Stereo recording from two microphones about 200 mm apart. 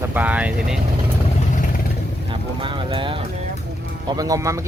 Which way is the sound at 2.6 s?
25° right (ahead or behind).